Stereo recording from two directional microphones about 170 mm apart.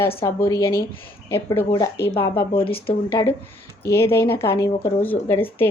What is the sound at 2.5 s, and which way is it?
Speech, 30° left (ahead or behind).